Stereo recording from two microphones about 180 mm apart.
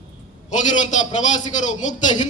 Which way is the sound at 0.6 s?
40° left (ahead or behind).